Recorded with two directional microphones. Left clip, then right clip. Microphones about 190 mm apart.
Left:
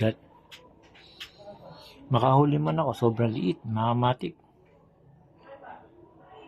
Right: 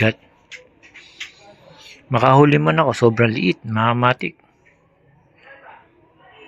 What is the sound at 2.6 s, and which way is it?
Speech, 35° right (ahead or behind).